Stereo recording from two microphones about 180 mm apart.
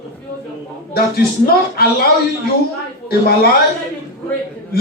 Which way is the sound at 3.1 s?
60° left (ahead or behind).